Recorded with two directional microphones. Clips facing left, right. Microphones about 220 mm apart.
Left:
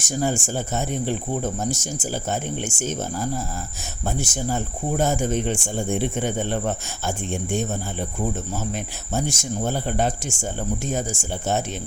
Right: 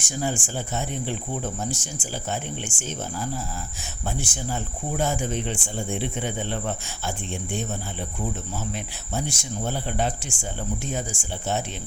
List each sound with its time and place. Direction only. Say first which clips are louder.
0.0 s speech: left 4 dB; 45° left (ahead or behind)